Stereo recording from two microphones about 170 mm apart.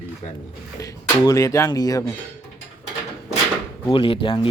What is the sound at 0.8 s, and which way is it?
Speech, 20° left (ahead or behind).